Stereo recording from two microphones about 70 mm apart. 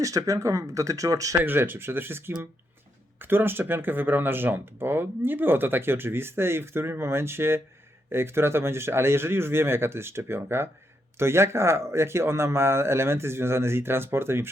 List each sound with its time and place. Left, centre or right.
0.0 s speech: right
1.5 s speech: right